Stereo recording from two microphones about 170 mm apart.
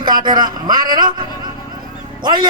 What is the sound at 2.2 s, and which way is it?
Speech, 25° right (ahead or behind).